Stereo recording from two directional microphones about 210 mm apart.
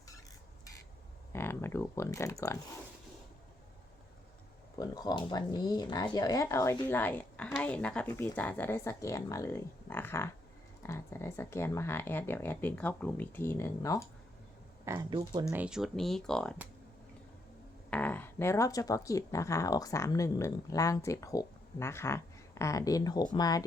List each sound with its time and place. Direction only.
1.3 s speech: 10° left (ahead or behind)
4.8 s speech: 20° left (ahead or behind)
15.1 s speech: 20° right (ahead or behind)
15.6 s speech: centre (ahead or behind)
17.9 s speech: 10° left (ahead or behind)